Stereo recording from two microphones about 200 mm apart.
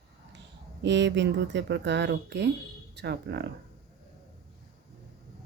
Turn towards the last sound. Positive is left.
turn(degrees=-55)  # may be behind; listen again after turning